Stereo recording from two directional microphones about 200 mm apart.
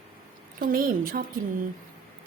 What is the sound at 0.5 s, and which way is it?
Speech, 45° right (ahead or behind).